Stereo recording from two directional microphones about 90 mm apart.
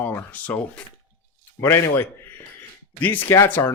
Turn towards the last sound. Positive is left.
turn(degrees=30)  # may be behind; listen again after turning